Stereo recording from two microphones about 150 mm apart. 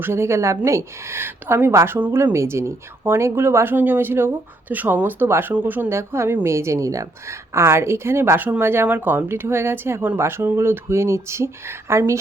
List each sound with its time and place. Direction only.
0.0 s speech: 15° right (ahead or behind)